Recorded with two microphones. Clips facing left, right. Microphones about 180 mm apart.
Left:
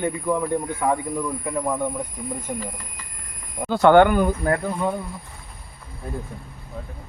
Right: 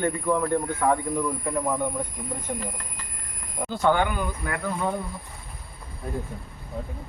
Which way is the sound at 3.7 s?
70° left (ahead or behind).